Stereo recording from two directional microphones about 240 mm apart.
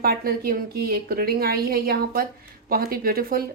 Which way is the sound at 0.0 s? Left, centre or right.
Right.